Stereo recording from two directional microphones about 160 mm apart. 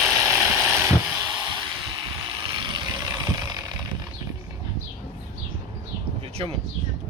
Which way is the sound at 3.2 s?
25° right (ahead or behind).